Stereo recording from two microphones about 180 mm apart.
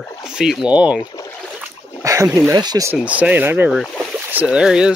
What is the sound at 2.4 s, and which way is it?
Speech, 20° right (ahead or behind).